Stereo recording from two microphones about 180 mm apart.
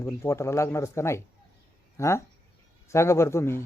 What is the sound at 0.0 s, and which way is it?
Speech, 15° left (ahead or behind).